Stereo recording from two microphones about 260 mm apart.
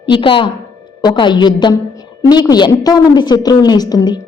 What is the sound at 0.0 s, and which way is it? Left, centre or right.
A woman's voice, centre.